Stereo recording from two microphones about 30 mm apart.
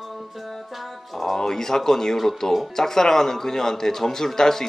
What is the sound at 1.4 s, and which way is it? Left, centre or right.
A man's voice, centre.